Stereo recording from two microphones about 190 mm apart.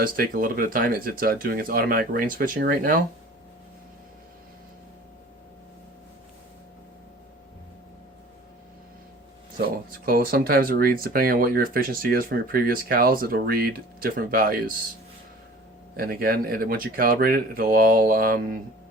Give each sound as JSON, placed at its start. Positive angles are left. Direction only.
{"t": 0.0, "sound": "speech", "side_deg": -45}
{"t": 10.1, "sound": "speech", "side_deg": -50}
{"t": 16.0, "sound": "speech", "side_deg": -50}